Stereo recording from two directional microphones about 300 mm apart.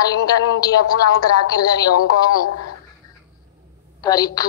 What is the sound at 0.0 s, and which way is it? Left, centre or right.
A woman's voice, centre.